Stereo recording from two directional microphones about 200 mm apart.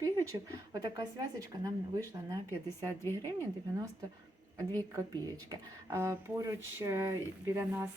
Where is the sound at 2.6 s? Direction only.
10° left (ahead or behind).